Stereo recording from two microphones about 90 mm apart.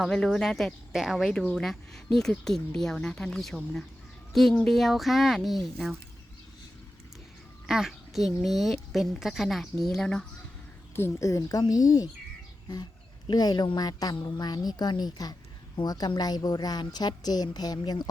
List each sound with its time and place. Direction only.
0.0 s speech: 5° left (ahead or behind)
7.7 s speech: 5° right (ahead or behind)
10.9 s a woman's voice: 30° left (ahead or behind); by 18.1 s 50° left (ahead or behind)